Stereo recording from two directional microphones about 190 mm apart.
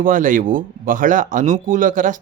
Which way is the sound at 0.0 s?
45° right (ahead or behind).